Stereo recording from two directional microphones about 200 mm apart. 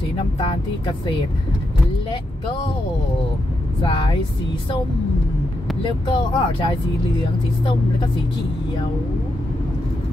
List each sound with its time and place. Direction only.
0.4 s speech: 25° left (ahead or behind)
3.8 s speech: 25° left (ahead or behind)
5.9 s speech: 25° left (ahead or behind)